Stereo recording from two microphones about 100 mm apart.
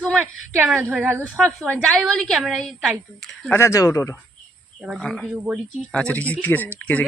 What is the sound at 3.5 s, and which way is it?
Speech, 25° left (ahead or behind).